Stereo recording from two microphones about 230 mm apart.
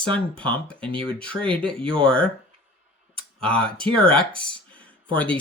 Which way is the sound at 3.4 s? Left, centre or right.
Centre.